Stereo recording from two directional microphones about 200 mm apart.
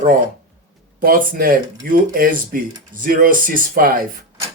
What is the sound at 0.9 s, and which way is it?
Speech, 45° right (ahead or behind).